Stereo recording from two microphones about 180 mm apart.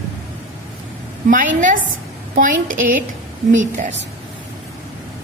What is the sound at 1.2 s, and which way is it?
A woman's voice, 50° right (ahead or behind).